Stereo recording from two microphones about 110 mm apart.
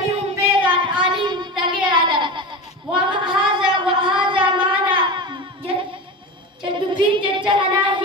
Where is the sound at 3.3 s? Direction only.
5° right (ahead or behind).